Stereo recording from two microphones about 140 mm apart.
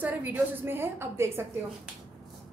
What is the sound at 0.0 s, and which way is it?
A woman's voice, 10° right (ahead or behind).